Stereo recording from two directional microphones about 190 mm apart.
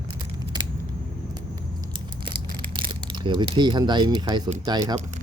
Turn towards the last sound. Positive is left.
turn(degrees=-20)  # may be behind; listen again after turning